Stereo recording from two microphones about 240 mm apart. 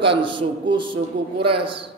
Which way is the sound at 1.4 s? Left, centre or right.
Right.